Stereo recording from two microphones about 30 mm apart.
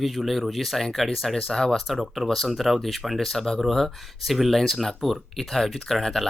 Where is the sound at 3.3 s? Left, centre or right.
Centre.